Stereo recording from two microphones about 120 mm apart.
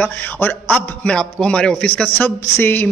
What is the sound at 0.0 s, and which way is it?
A man's voice, 15° left (ahead or behind).